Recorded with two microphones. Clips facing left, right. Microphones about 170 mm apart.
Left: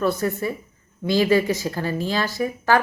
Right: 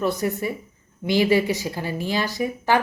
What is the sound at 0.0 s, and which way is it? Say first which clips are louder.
Speech: left 1 dB; 15° right (ahead or behind).